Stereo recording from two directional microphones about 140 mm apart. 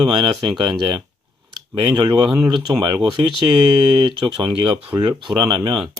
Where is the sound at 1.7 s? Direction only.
35° right (ahead or behind).